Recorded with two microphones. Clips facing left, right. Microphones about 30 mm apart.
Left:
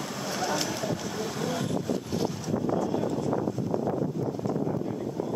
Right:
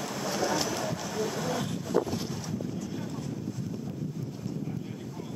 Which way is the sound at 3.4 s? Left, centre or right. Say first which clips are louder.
Left 8 dB; left.